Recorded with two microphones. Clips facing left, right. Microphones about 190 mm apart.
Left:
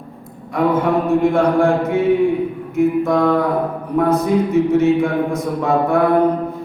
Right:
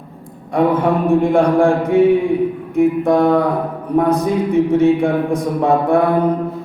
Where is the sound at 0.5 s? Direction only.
30° right (ahead or behind).